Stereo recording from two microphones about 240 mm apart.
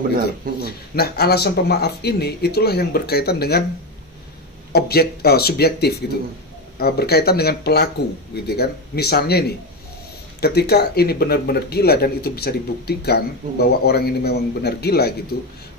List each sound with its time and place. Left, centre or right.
0.7 s speech: left
4.7 s speech: left
10.4 s speech: left